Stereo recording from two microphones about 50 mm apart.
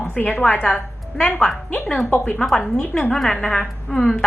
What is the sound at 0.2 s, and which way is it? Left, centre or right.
Speech, left.